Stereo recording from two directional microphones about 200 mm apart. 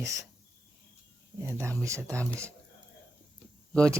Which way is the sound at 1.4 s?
15° right (ahead or behind).